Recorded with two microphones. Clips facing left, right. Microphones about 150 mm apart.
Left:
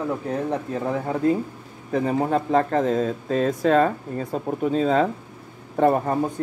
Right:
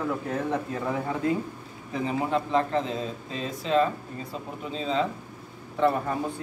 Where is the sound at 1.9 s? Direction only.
45° left (ahead or behind).